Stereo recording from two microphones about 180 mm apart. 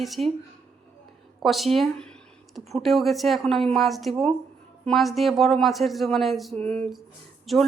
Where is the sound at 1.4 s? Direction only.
Centre (ahead or behind).